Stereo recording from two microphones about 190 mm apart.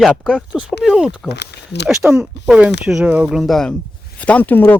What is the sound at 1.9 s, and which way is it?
Speech, 5° right (ahead or behind).